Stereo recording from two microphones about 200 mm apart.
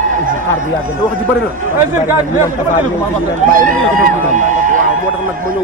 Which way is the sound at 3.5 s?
45° right (ahead or behind).